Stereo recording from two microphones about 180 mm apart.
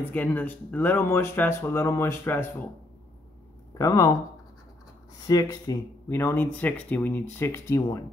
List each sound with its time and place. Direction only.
0.0 s speech: 10° left (ahead or behind)
3.7 s speech: 20° left (ahead or behind)
5.2 s speech: 20° left (ahead or behind)